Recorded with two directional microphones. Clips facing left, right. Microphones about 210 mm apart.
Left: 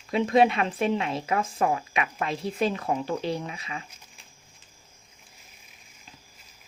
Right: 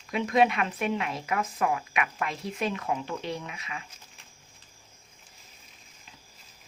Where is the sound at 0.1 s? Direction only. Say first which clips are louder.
Left 3 dB; 30° left (ahead or behind).